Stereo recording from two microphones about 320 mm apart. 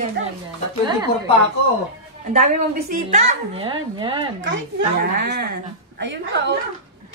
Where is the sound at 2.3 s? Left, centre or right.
Right.